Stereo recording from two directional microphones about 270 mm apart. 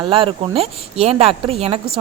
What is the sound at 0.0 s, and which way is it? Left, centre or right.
A woman's voice, centre.